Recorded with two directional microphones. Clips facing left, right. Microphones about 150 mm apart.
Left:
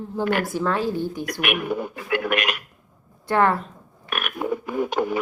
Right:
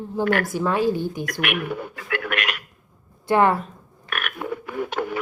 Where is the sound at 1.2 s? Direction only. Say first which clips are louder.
Left 1 dB; 20° left (ahead or behind).